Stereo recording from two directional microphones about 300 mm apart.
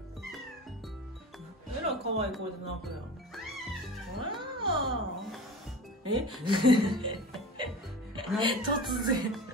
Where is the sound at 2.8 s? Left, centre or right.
Centre.